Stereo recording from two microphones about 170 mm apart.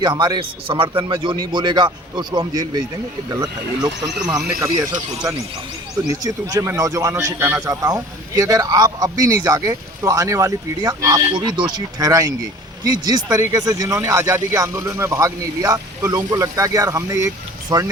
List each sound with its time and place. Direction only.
0.0 s speech: 25° right (ahead or behind)